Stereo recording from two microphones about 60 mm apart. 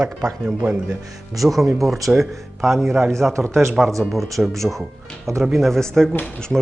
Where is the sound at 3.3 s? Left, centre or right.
Right.